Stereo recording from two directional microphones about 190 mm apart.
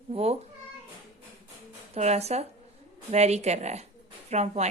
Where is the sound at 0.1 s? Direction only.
35° right (ahead or behind).